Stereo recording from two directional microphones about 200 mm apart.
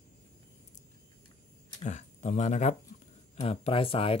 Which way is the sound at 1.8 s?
35° left (ahead or behind).